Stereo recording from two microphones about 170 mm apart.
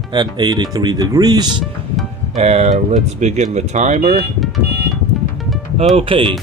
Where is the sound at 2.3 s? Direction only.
40° right (ahead or behind).